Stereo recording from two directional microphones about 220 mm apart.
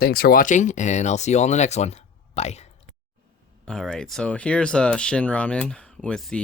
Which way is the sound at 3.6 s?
5° left (ahead or behind).